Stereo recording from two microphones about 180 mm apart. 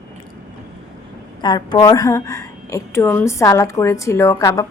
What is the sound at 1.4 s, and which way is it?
A woman's voice, 25° left (ahead or behind).